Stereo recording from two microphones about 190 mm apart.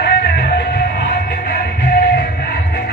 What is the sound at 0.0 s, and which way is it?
Music, 60° left (ahead or behind).